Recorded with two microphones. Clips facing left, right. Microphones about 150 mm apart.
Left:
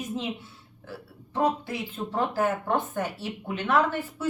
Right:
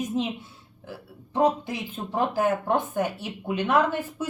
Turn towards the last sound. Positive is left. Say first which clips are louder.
# right 2 dB
turn(degrees=-15)  # may be behind; listen again after turning